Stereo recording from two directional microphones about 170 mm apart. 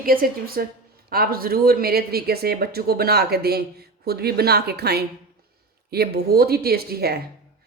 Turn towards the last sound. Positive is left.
turn(degrees=-65)  # may be behind; listen again after turning